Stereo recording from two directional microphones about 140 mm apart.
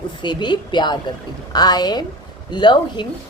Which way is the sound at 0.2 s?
35° left (ahead or behind).